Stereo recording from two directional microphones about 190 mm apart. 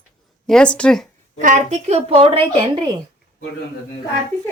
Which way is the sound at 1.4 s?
40° right (ahead or behind).